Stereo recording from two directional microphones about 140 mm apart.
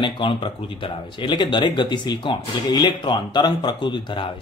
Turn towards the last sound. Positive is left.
turn(degrees=35)  # may be behind; listen again after turning